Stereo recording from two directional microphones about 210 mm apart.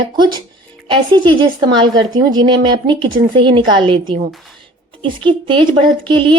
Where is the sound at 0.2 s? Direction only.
20° right (ahead or behind).